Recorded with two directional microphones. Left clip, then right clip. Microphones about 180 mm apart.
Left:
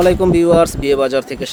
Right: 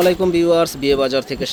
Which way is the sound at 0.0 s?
15° left (ahead or behind).